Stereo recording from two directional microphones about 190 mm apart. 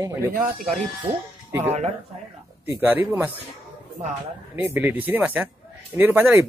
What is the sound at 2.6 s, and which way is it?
Speech, 10° right (ahead or behind).